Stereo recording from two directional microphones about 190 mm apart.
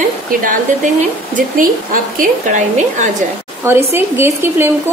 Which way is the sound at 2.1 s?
40° right (ahead or behind).